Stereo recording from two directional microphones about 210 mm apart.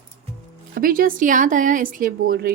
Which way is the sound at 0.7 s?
40° right (ahead or behind).